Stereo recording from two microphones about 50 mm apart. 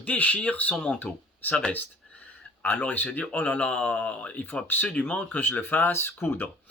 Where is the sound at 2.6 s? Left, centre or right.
Left.